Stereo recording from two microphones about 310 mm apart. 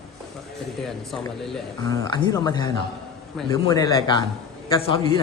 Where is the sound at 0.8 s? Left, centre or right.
Centre.